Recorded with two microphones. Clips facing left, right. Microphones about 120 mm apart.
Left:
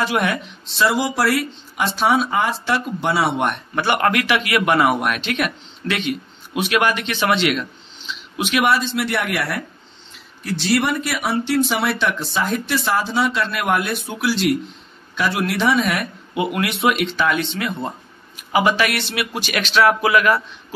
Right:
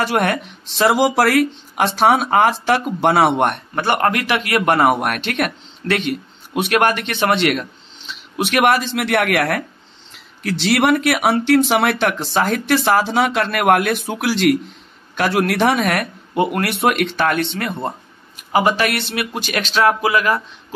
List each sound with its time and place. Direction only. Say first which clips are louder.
0.0 s speech: right 2 dB; 65° right (ahead or behind)
0.3 s speech: right 3 dB; 55° right (ahead or behind)
3.7 s speech: right 1 dB; 35° right (ahead or behind)
4.4 s speech: right 1 dB; 45° right (ahead or behind)
8.6 s speech: right 3 dB; 60° right (ahead or behind)
10.7 s speech: right 5 dB; 70° right (ahead or behind)
15.1 s speech: right 4 dB; 45° right (ahead or behind)
18.6 s speech: right 1 dB; 30° right (ahead or behind)